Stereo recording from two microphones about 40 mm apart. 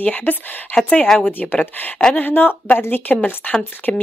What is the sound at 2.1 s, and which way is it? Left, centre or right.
Speech, left.